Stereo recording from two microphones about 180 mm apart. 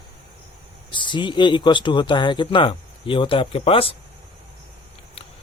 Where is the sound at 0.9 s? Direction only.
25° left (ahead or behind).